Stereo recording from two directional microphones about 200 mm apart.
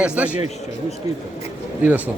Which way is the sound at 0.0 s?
5° right (ahead or behind).